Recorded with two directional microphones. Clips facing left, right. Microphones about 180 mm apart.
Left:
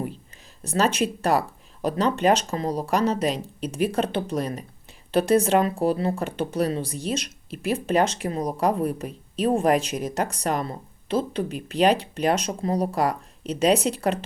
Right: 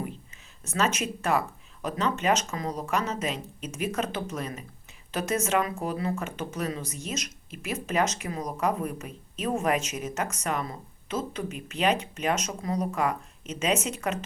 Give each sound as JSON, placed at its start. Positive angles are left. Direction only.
{"t": 0.6, "sound": "speech", "side_deg": 35}